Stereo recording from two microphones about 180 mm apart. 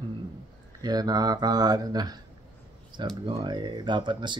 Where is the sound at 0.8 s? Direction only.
20° right (ahead or behind).